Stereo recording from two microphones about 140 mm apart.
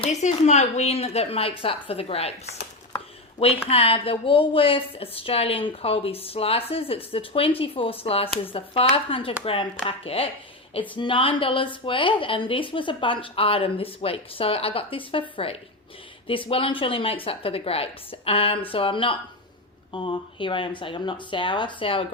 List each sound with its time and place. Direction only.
0.0 s a woman's voice: 55° left (ahead or behind)
3.7 s a woman's voice: 45° left (ahead or behind)
16.2 s speech: 40° left (ahead or behind)